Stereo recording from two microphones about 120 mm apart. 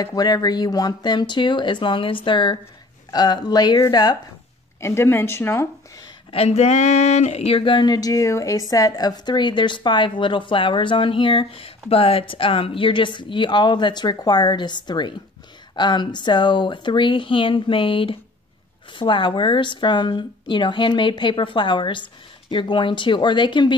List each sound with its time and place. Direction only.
0.0 s speech: 35° left (ahead or behind)
4.7 s speech: 20° left (ahead or behind)
6.3 s a sound: 60° left (ahead or behind); by 15.1 s 40° left (ahead or behind)
15.7 s speech: 40° left (ahead or behind)